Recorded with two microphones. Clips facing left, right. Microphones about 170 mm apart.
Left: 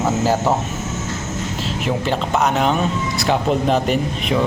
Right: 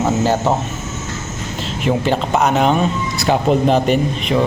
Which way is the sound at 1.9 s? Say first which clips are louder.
Right 4 dB; centre (ahead or behind).